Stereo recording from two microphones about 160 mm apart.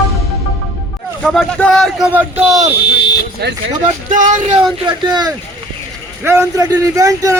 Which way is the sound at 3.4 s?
90° right.